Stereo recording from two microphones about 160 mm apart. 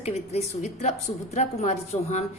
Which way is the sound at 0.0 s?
40° left (ahead or behind).